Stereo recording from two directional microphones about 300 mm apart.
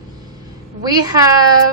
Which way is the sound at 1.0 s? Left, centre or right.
Centre.